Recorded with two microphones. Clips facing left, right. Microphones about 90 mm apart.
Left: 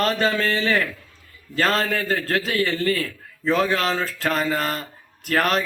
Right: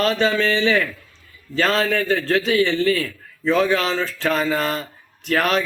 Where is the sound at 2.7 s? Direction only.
40° left (ahead or behind).